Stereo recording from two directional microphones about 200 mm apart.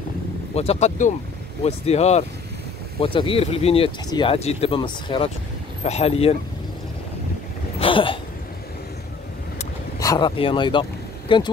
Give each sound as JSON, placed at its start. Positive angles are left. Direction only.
{"t": 0.6, "sound": "speech", "side_deg": 35}
{"t": 7.8, "sound": "a sound", "side_deg": 25}
{"t": 9.9, "sound": "speech", "side_deg": 20}